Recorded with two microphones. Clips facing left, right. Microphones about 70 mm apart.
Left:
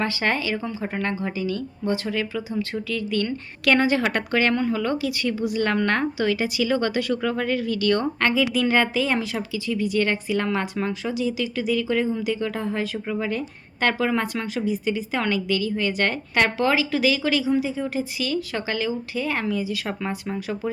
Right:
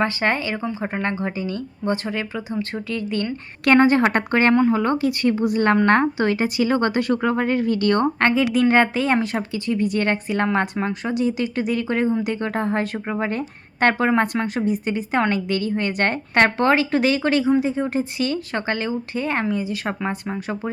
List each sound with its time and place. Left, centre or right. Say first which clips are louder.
0.0 s a woman's voice: right 3 dB; right
11.1 s a woman's voice: right 3 dB; right